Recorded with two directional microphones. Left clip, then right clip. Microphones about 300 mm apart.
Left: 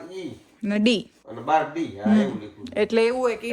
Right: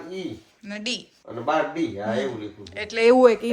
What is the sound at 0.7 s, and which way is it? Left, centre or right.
Speech, left.